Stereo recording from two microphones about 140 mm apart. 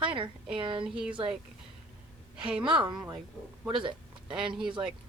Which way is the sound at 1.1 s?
40° right (ahead or behind).